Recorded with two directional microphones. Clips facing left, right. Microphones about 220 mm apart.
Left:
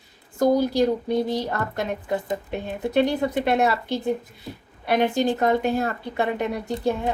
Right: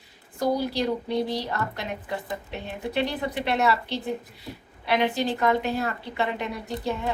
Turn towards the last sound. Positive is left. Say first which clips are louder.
# left 5 dB
turn(degrees=45)  # may be behind; listen again after turning